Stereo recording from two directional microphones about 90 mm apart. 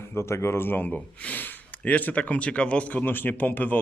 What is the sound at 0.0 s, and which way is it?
Speech, 30° left (ahead or behind).